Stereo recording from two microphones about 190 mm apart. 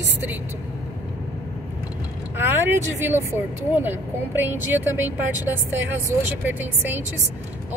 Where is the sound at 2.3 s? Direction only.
10° right (ahead or behind).